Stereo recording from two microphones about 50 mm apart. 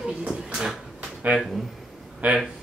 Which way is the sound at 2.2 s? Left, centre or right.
Right.